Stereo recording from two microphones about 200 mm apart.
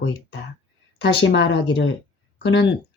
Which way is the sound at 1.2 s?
60° left (ahead or behind).